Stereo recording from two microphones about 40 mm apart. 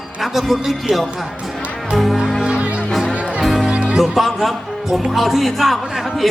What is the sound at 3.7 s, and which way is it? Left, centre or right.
Music, right.